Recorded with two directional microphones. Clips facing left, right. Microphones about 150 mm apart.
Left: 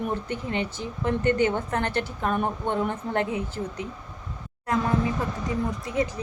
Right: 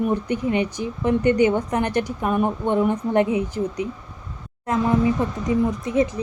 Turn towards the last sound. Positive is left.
turn(degrees=-20)  # may be behind; listen again after turning